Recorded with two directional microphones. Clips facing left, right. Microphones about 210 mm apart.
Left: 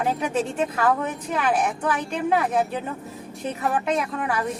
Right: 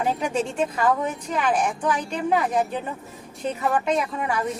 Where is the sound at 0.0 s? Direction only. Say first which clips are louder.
Even; centre (ahead or behind).